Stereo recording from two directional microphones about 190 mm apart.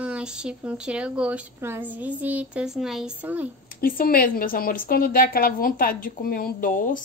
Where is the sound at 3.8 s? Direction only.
50° left (ahead or behind).